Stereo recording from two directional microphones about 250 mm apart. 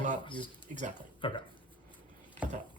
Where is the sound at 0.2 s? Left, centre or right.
Centre.